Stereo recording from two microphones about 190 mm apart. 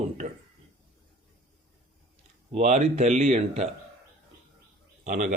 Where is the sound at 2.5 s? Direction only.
35° right (ahead or behind).